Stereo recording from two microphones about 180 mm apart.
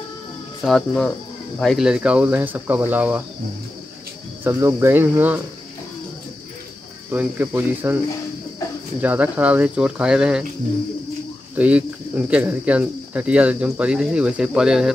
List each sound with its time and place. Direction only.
0.7 s speech: 5° left (ahead or behind)
4.5 s speech: 15° right (ahead or behind)
7.1 s speech: 10° right (ahead or behind)
9.0 s speech: 10° right (ahead or behind)
11.5 s speech: 5° right (ahead or behind)